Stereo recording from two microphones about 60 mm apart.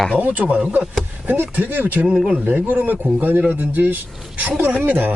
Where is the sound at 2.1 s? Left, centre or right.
Centre.